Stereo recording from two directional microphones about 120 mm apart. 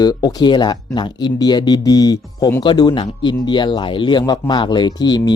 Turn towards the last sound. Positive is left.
turn(degrees=35)  # may be behind; listen again after turning